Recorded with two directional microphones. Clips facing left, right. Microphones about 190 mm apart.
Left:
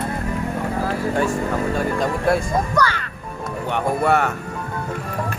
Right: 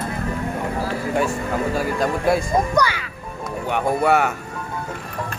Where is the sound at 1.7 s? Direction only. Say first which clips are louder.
Even; 5° right (ahead or behind).